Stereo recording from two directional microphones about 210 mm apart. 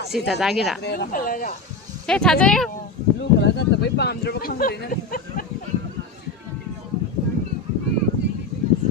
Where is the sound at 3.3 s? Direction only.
55° left (ahead or behind).